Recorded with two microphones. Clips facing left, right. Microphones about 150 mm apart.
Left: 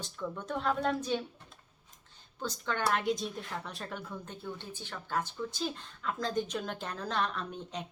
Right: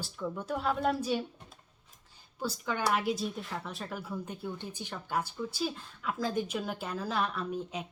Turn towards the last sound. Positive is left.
turn(degrees=-5)  # may be behind; listen again after turning